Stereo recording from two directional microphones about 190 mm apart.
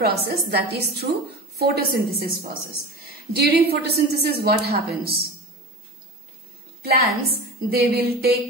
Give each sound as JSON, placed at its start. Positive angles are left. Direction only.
{"t": 0.0, "sound": "a woman's voice", "side_deg": -60}
{"t": 6.8, "sound": "a woman's voice", "side_deg": -55}